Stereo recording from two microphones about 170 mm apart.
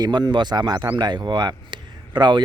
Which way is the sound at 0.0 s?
25° right (ahead or behind).